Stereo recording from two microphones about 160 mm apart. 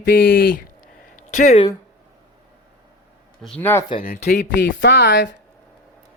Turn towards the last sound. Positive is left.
turn(degrees=90)